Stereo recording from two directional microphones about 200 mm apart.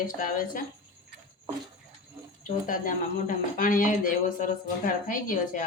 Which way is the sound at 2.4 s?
40° left (ahead or behind).